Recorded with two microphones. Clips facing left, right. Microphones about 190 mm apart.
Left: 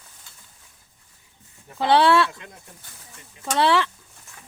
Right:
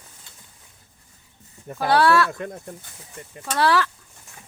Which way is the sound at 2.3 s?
50° right (ahead or behind).